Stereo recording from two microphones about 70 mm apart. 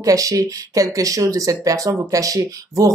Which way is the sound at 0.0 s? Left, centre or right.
Right.